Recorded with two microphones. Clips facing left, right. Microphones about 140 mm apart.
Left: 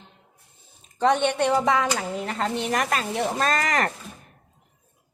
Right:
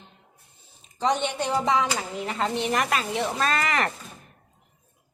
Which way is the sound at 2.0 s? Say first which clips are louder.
Left 1 dB; 45° left (ahead or behind).